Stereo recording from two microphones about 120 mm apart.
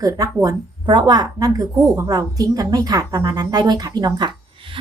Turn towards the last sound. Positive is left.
turn(degrees=-40)  # may be behind; listen again after turning